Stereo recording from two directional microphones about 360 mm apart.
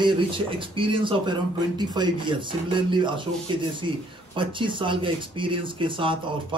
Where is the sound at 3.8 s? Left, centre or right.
Right.